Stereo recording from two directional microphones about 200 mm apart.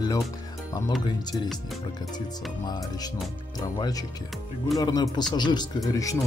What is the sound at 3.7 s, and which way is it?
Speech, 20° left (ahead or behind).